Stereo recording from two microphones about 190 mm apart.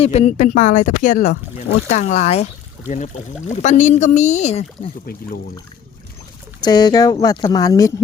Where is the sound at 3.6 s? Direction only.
40° left (ahead or behind).